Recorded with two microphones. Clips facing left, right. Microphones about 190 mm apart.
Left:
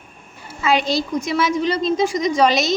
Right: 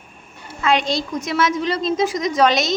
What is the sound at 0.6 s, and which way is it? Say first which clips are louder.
A woman's voice: left 1 dB; 5° left (ahead or behind).